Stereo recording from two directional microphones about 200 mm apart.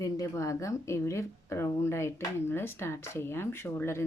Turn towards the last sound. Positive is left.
turn(degrees=10)  # may be behind; listen again after turning